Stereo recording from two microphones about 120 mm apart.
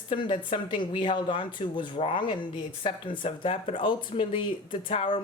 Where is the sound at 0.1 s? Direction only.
45° left (ahead or behind).